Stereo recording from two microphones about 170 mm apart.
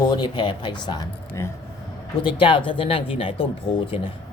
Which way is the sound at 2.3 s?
30° left (ahead or behind).